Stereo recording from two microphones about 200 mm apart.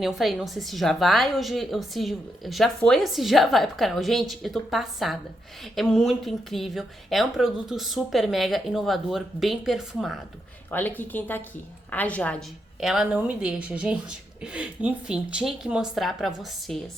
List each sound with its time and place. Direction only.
0.0 s a woman's voice: centre (ahead or behind)
10.7 s a woman's voice: 10° left (ahead or behind)